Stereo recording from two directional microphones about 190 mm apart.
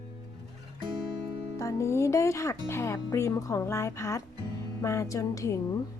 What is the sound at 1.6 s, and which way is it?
Speech, 15° left (ahead or behind).